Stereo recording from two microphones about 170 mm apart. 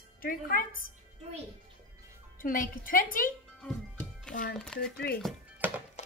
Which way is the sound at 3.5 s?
5° left (ahead or behind).